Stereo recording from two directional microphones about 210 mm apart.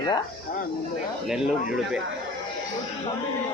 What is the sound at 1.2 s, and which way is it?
Speech, 5° right (ahead or behind).